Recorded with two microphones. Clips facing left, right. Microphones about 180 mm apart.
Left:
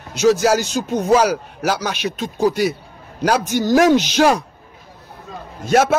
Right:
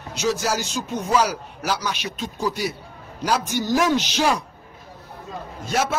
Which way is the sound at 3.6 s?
70° left (ahead or behind).